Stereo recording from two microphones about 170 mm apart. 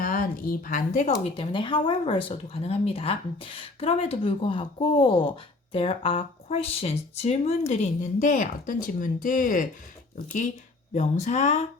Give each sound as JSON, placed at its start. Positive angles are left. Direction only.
{"t": 0.0, "sound": "speech", "side_deg": 55}
{"t": 1.2, "sound": "speech", "side_deg": 30}